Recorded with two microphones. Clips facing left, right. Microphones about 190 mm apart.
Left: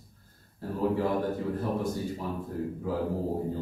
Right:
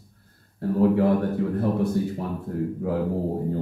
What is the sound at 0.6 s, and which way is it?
Speech, 65° right (ahead or behind).